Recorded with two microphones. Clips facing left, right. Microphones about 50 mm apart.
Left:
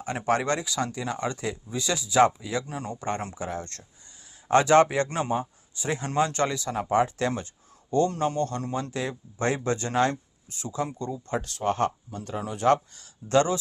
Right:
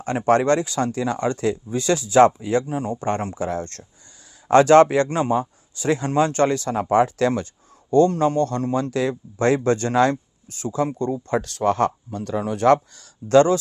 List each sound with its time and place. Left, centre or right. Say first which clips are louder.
0.2 s speech: right 8 dB; right
0.9 s speech: right 7 dB; right
2.6 s speech: right 8 dB; right
3.3 s speech: right 7 dB; right
6.1 s speech: right 5 dB; right
8.7 s speech: right 8 dB; right
10.6 s speech: right 8 dB; right